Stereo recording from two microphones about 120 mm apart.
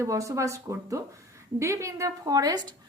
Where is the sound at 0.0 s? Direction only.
25° right (ahead or behind).